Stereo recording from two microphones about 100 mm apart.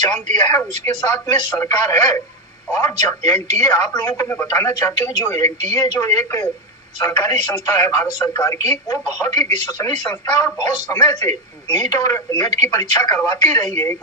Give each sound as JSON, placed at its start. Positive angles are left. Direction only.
{"t": 0.1, "sound": "a woman's voice", "side_deg": 45}
{"t": 5.3, "sound": "speech", "side_deg": 30}
{"t": 5.7, "sound": "a woman's voice", "side_deg": 45}